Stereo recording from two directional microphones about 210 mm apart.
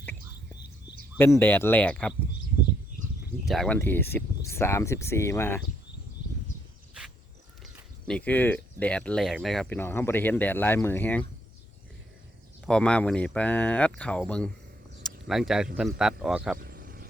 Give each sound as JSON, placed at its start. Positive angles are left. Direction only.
{"t": 1.2, "sound": "speech", "side_deg": 10}
{"t": 3.4, "sound": "speech", "side_deg": 0}
{"t": 7.6, "sound": "speech", "side_deg": 5}
{"t": 12.6, "sound": "speech", "side_deg": 5}
{"t": 16.6, "sound": "a sound", "side_deg": -45}